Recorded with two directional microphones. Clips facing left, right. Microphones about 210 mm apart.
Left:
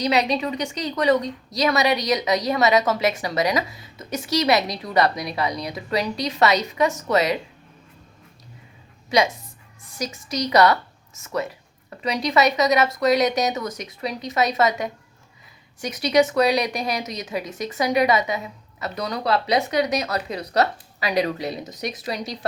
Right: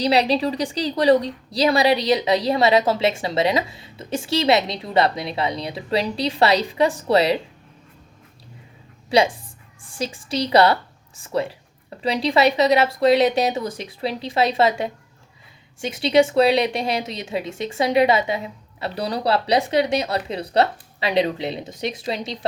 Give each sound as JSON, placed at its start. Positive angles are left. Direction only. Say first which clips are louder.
{"t": 0.0, "sound": "a woman's voice", "louder": "right 3 dB", "side_deg": -30}
{"t": 9.0, "sound": "a woman's voice", "louder": "right 2 dB", "side_deg": -30}